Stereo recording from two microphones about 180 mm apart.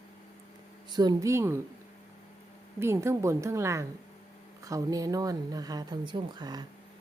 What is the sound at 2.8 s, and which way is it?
A woman's voice, 15° right (ahead or behind).